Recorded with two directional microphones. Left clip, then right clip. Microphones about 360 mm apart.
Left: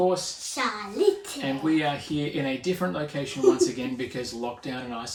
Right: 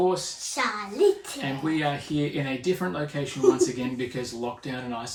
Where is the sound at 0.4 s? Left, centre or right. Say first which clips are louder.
Right 1 dB; centre.